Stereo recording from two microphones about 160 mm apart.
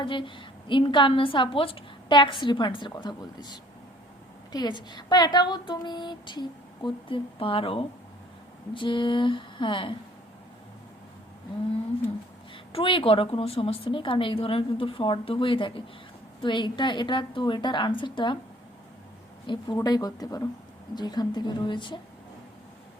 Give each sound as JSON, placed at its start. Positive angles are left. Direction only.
{"t": 0.0, "sound": "a woman's voice", "side_deg": 30}
{"t": 12.7, "sound": "a woman's voice", "side_deg": 35}
{"t": 19.5, "sound": "a woman's voice", "side_deg": 25}